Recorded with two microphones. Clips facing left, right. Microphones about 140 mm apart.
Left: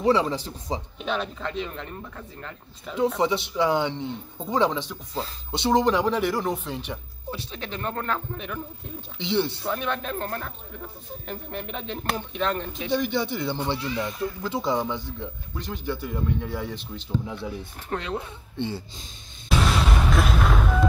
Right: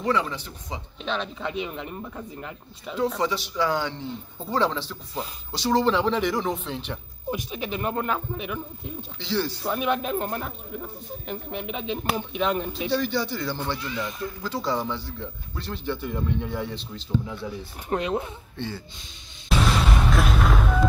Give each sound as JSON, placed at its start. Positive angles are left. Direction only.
{"t": 0.0, "sound": "speech", "side_deg": 25}
{"t": 1.0, "sound": "speech", "side_deg": 5}
{"t": 1.4, "sound": "speech", "side_deg": -10}
{"t": 3.2, "sound": "speech", "side_deg": 25}
{"t": 7.2, "sound": "speech", "side_deg": -10}
{"t": 9.2, "sound": "speech", "side_deg": 25}
{"t": 9.6, "sound": "speech", "side_deg": -10}
{"t": 11.2, "sound": "speech", "side_deg": -5}
{"t": 12.7, "sound": "speech", "side_deg": 20}
{"t": 17.8, "sound": "speech", "side_deg": -20}
{"t": 19.8, "sound": "artillery fire", "side_deg": 0}